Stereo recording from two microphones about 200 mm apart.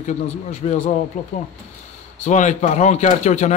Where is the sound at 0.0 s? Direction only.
35° left (ahead or behind).